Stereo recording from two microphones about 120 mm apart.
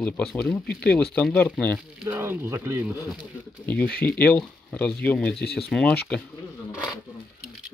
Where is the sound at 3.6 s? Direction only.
15° left (ahead or behind).